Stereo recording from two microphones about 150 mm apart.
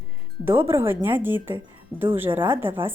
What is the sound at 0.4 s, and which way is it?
A woman's voice, 15° right (ahead or behind).